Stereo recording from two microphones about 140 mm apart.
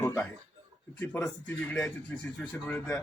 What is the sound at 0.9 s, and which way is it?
Speech, 15° left (ahead or behind).